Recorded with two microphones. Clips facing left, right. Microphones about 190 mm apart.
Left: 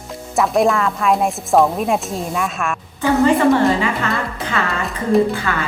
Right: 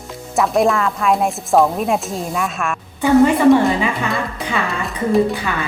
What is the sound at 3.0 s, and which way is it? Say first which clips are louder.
Speech: right 2 dB; 15° right (ahead or behind).